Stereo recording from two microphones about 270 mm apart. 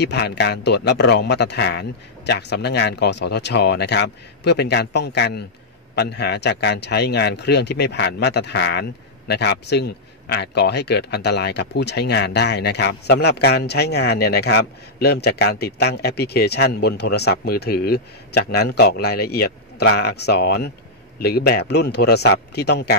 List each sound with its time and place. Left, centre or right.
0.0 s speech: left